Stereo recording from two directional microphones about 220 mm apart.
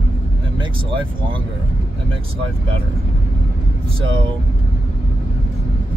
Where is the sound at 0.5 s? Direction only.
20° right (ahead or behind).